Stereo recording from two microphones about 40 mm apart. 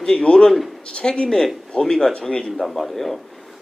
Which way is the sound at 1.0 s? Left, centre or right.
Centre.